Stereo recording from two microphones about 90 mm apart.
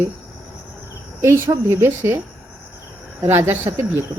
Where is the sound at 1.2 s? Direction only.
30° right (ahead or behind).